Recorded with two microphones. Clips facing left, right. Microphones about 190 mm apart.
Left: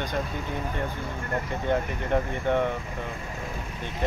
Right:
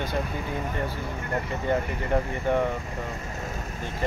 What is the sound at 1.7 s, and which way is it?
Speech, 10° right (ahead or behind).